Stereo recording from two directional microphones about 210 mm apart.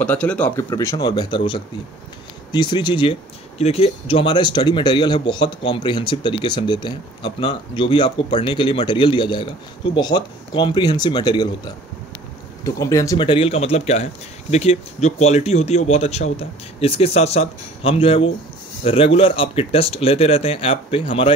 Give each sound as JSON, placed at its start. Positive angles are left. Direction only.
{"t": 0.0, "sound": "speech", "side_deg": 5}